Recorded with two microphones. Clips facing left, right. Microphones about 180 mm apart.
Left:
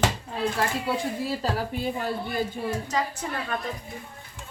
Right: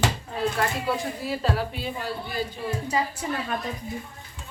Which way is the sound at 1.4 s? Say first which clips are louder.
Even; 45° left (ahead or behind).